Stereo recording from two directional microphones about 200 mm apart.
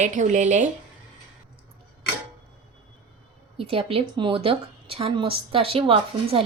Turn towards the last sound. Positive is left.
turn(degrees=-30)  # may be behind; listen again after turning